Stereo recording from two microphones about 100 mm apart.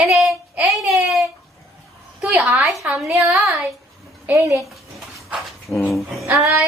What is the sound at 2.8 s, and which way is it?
Speech, 15° right (ahead or behind).